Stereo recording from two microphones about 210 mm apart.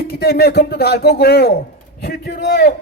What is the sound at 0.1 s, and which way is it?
A man's voice, 50° left (ahead or behind).